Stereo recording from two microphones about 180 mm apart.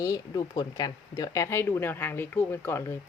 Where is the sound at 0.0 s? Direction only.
20° left (ahead or behind).